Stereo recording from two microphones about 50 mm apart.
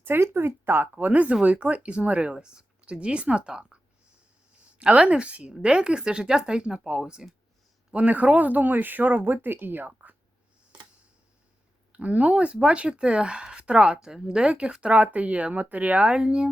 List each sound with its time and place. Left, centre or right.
0.0 s speech: right
2.3 s speech: centre
4.8 s speech: right
7.9 s speech: right
11.9 s speech: right